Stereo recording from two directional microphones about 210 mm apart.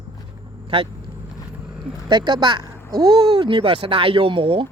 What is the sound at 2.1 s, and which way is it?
Speech, 20° right (ahead or behind).